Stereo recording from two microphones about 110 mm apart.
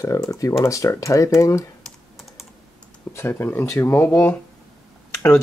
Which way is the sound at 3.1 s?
25° left (ahead or behind).